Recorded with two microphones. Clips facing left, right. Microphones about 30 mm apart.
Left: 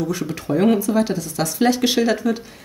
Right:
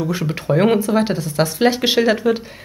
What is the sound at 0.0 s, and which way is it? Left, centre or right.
Speech, right.